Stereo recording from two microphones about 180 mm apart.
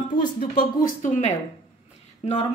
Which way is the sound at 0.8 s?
40° left (ahead or behind).